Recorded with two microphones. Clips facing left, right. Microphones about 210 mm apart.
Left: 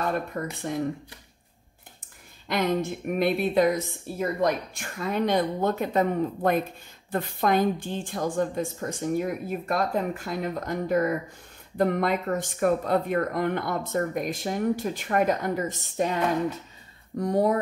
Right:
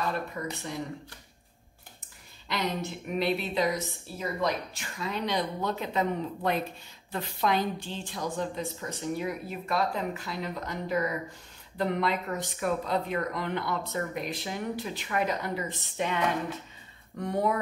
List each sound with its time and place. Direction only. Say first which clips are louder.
0.0 s speech: left 4 dB; 55° left (ahead or behind)
2.4 s speech: left 6 dB; 55° left (ahead or behind)